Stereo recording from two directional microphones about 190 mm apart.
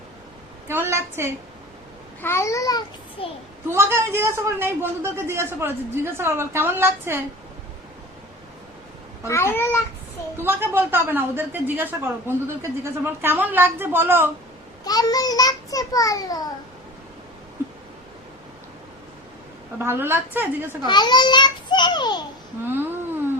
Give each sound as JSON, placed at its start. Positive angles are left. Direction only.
{"t": 0.7, "sound": "speech", "side_deg": -10}
{"t": 2.2, "sound": "a child's voice", "side_deg": 15}
{"t": 3.7, "sound": "speech", "side_deg": -15}
{"t": 9.2, "sound": "a child's voice", "side_deg": 15}
{"t": 10.3, "sound": "speech", "side_deg": -10}
{"t": 14.8, "sound": "a child's voice", "side_deg": 20}
{"t": 19.8, "sound": "speech", "side_deg": -10}
{"t": 20.8, "sound": "a child's voice", "side_deg": 20}
{"t": 22.6, "sound": "speech", "side_deg": -10}